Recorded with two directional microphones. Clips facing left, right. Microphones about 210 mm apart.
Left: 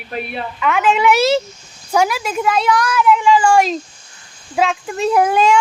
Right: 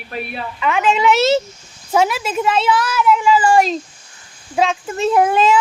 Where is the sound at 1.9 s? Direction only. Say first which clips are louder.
Even; 25° right (ahead or behind).